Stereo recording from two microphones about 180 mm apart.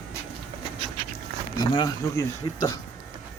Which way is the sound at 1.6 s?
25° left (ahead or behind).